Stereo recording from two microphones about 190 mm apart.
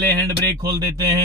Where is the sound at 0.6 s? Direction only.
15° right (ahead or behind).